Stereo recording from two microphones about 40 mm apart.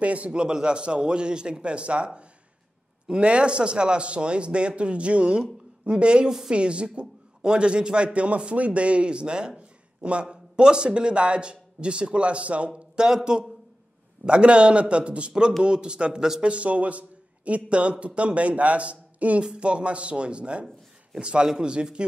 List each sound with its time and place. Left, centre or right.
0.0 s a man's voice: right
0.3 s a man's voice: right
3.1 s a man's voice: right
9.6 s a sound: right
10.2 s speech: right
13.0 s a man's voice: centre; by 19.4 s right
19.4 s a man's voice: right